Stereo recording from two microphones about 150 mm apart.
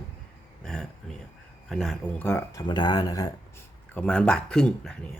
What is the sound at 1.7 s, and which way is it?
Speech, 5° left (ahead or behind).